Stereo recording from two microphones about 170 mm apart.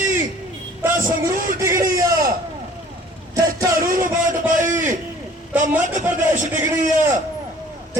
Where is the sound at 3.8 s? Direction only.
55° right (ahead or behind).